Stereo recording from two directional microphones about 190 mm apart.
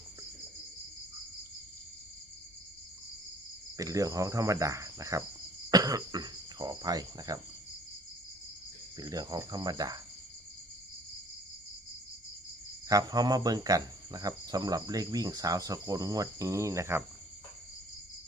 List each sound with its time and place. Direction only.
3.8 s cricket: 20° right (ahead or behind)
9.0 s speech: 20° right (ahead or behind)
12.9 s speech: 20° right (ahead or behind)